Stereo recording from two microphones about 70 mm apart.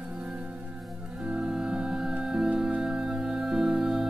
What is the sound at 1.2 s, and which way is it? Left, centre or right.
Music, centre.